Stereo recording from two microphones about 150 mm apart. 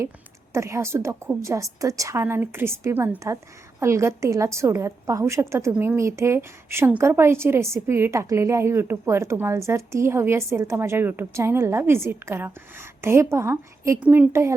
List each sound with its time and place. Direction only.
0.5 s a woman's voice: 20° right (ahead or behind)